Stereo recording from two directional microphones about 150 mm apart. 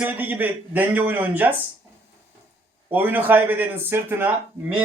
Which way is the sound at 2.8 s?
10° right (ahead or behind).